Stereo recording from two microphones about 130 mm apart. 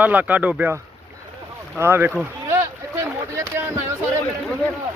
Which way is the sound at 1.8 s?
15° right (ahead or behind).